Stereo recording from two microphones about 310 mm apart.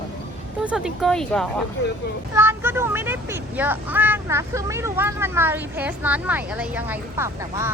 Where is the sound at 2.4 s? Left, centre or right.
Centre.